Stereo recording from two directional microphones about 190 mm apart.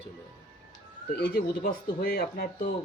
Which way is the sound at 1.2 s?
50° left (ahead or behind).